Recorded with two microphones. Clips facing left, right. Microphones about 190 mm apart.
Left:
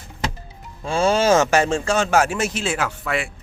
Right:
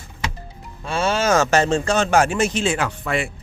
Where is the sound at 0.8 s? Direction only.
30° left (ahead or behind).